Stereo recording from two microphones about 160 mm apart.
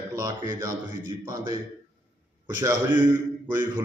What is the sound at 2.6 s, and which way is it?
Speech, 15° right (ahead or behind).